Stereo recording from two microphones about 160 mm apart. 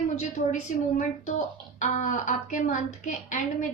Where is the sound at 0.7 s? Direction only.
50° left (ahead or behind).